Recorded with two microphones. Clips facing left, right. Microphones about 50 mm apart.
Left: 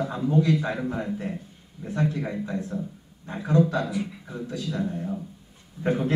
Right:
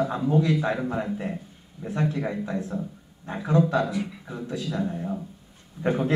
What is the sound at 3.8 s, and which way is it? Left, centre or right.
Speech, centre.